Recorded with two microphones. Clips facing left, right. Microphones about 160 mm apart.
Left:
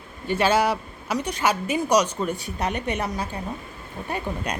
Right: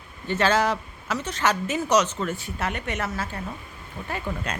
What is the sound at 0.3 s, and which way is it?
A woman's voice, 10° left (ahead or behind).